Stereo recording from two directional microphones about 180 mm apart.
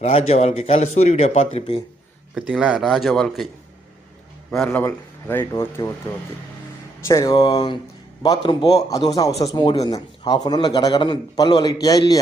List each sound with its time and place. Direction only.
0.0 s speech: 35° left (ahead or behind)
2.3 s speech: 5° right (ahead or behind)
4.5 s speech: 5° left (ahead or behind)
7.1 s a man's voice: 20° left (ahead or behind)